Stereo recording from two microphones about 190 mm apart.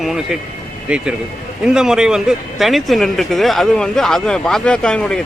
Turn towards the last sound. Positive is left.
turn(degrees=5)  # may be behind; listen again after turning